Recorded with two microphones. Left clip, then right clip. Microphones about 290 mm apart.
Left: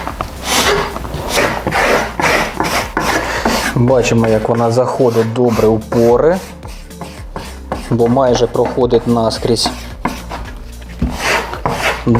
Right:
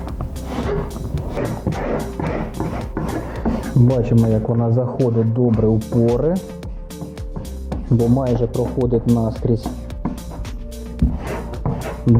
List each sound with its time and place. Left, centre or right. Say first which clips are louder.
0.0 s a sound: left 11 dB; centre
4.0 s speech: left 7 dB; centre
5.1 s speech: left 7 dB; centre
7.3 s music: left 11 dB; centre
8.0 s speech: left 9 dB; centre
9.4 s chopping: left 8 dB; centre
11.1 s wood: left 13 dB; centre